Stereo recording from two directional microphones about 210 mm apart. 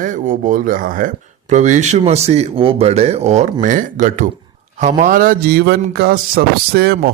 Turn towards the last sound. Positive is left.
turn(degrees=-50)  # may be behind; listen again after turning